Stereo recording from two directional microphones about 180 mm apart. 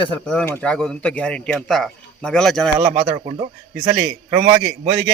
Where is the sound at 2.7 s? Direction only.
10° right (ahead or behind).